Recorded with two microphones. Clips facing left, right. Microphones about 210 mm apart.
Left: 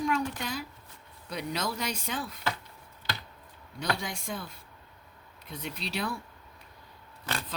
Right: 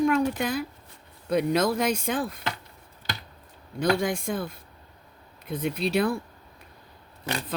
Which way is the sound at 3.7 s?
50° right (ahead or behind).